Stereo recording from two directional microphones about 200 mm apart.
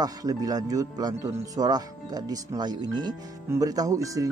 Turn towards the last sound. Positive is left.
turn(degrees=-15)  # may be behind; listen again after turning